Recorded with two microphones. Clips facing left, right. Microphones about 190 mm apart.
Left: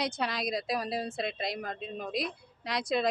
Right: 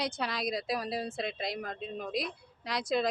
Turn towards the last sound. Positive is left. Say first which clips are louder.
# left 1 dB
turn(degrees=0)  # may be behind; listen again after turning